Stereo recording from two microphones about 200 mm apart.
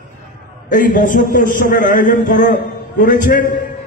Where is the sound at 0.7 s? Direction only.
40° left (ahead or behind).